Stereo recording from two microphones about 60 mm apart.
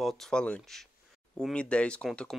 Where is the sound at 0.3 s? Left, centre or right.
Centre.